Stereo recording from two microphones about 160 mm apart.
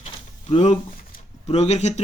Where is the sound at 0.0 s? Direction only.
35° left (ahead or behind).